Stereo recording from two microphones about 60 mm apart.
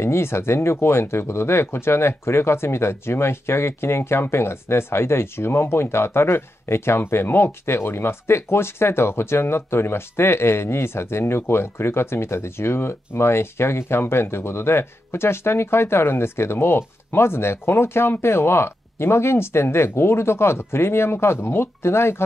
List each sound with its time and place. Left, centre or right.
0.0 s speech: left